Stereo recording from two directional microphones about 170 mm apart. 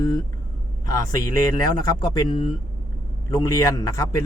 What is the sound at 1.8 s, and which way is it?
A man's voice, 25° left (ahead or behind).